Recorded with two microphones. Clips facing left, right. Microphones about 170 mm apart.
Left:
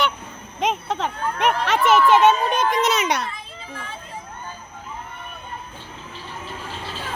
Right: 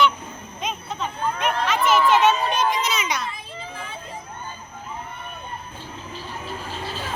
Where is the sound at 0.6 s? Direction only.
85° left; by 3.2 s 65° left (ahead or behind).